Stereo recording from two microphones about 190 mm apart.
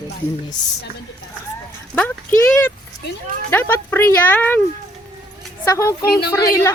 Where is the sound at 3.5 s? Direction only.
10° left (ahead or behind).